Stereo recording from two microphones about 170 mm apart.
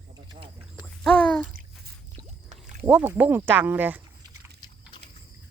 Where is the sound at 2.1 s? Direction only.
40° right (ahead or behind).